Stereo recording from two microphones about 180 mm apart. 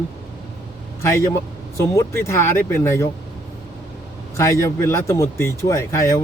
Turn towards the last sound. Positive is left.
turn(degrees=15)  # may be behind; listen again after turning